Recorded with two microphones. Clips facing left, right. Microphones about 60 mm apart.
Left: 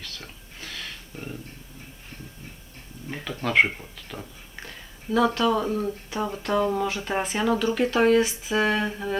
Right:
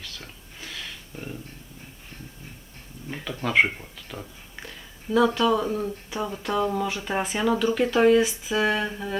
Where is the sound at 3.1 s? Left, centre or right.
Centre.